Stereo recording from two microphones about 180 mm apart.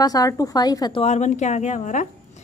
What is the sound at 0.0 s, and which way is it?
A woman's voice, 20° left (ahead or behind).